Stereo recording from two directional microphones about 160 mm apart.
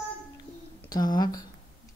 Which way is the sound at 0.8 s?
25° left (ahead or behind).